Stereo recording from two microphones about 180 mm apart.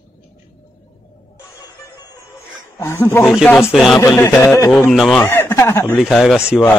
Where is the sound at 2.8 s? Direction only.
15° left (ahead or behind).